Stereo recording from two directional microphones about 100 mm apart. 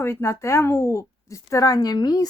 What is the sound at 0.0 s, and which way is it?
A woman's voice, 25° left (ahead or behind).